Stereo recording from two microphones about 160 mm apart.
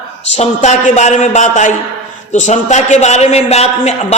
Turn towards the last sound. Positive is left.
turn(degrees=40)  # may be behind; listen again after turning